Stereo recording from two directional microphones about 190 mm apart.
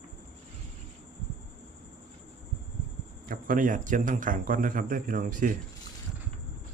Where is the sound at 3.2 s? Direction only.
45° right (ahead or behind).